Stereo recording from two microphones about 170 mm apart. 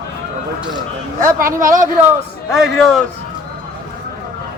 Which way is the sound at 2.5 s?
Centre (ahead or behind).